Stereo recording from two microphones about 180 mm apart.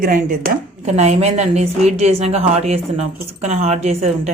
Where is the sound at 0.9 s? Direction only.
35° right (ahead or behind).